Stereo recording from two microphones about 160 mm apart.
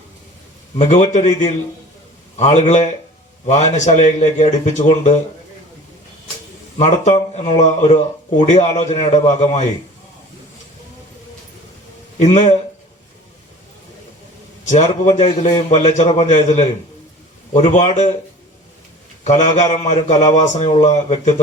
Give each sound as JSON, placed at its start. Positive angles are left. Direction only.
{"t": 0.8, "sound": "speech", "side_deg": 45}
{"t": 2.4, "sound": "speech", "side_deg": 45}
{"t": 6.7, "sound": "speech", "side_deg": 45}
{"t": 12.2, "sound": "speech", "side_deg": 45}
{"t": 14.6, "sound": "speech", "side_deg": 50}
{"t": 19.2, "sound": "speech", "side_deg": 45}